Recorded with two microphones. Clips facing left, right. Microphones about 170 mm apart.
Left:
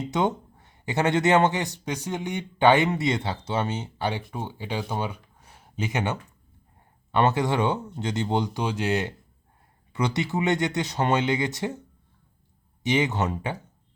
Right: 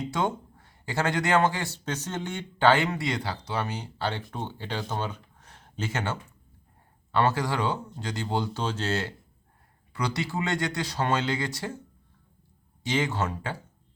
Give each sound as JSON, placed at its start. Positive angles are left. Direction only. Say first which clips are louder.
{"t": 0.0, "sound": "a man's voice", "louder": "left 3 dB", "side_deg": 20}
{"t": 12.8, "sound": "speech", "louder": "left 3 dB", "side_deg": 20}